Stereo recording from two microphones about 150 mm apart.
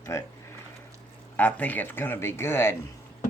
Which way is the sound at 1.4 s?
10° left (ahead or behind).